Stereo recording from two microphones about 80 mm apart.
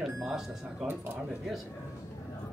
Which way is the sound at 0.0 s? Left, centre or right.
Centre.